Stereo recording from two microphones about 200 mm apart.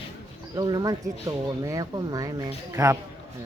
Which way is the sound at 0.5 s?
20° right (ahead or behind).